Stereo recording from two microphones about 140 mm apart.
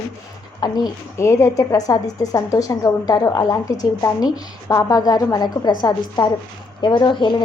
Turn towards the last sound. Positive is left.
turn(degrees=35)  # may be behind; listen again after turning